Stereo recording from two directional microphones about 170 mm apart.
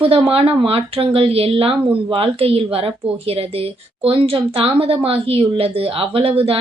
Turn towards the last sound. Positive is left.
turn(degrees=-35)  # may be behind; listen again after turning